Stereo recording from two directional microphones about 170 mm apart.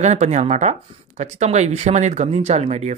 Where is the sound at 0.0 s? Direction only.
40° right (ahead or behind).